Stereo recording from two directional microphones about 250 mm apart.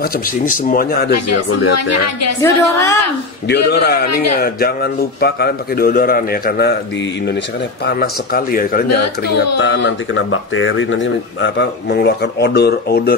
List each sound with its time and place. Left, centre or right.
0.5 s speech: left
1.1 s a woman's voice: left
2.4 s a woman's voice: centre
3.4 s speech: left
7.8 s speech: left
9.6 s speech: left